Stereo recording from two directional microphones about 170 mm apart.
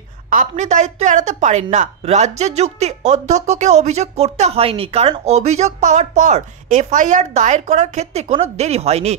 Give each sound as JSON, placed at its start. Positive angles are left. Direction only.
{"t": 0.3, "sound": "speech", "side_deg": -50}